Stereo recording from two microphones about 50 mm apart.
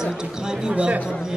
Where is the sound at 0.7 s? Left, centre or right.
Right.